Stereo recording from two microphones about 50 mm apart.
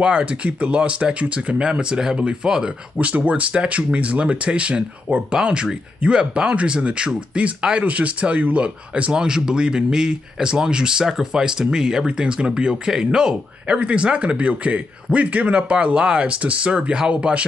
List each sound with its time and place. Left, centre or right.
0.0 s speech: right
3.0 s speech: right